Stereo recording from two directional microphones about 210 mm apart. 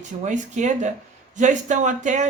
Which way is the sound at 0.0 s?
35° right (ahead or behind).